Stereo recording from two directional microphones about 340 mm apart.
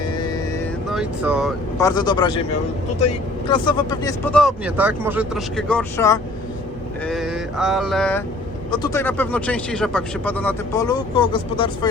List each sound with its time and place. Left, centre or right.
0.9 s speech: centre
1.8 s speech: centre
3.5 s speech: centre